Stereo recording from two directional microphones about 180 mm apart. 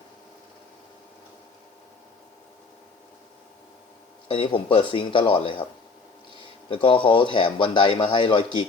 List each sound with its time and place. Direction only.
4.3 s a man's voice: 30° left (ahead or behind)
6.7 s a man's voice: 30° left (ahead or behind)